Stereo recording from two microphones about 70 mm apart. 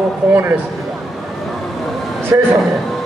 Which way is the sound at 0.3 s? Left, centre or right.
Right.